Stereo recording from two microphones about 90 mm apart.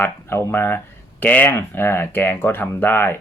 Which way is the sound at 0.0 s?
25° left (ahead or behind).